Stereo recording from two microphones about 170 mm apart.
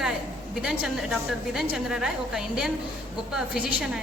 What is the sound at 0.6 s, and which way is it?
A woman's voice, 5° right (ahead or behind).